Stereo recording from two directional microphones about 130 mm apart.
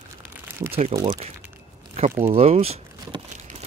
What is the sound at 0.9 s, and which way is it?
Speech, 50° right (ahead or behind).